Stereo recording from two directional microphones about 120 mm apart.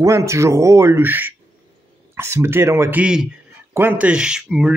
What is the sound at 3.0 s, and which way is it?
Speech, 5° right (ahead or behind).